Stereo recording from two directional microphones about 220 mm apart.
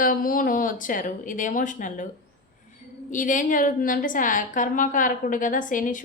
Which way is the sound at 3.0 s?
35° left (ahead or behind).